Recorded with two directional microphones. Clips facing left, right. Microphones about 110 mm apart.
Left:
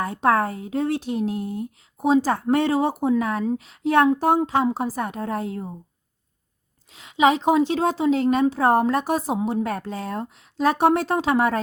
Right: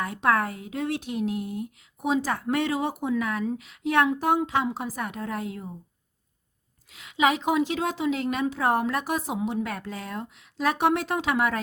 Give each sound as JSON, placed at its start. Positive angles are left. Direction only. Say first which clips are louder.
{"t": 0.0, "sound": "speech", "louder": "left 4 dB", "side_deg": 30}
{"t": 6.9, "sound": "speech", "louder": "left 5 dB", "side_deg": 30}